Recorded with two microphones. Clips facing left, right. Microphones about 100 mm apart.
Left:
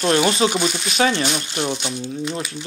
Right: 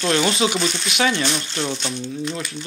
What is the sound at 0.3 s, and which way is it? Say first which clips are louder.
Speech: left 2 dB; 35° left (ahead or behind).